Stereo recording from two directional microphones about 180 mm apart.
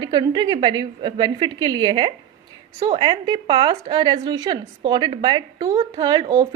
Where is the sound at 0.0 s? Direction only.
25° right (ahead or behind).